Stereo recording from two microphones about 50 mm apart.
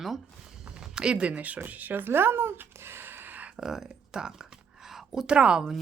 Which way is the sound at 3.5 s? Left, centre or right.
Centre.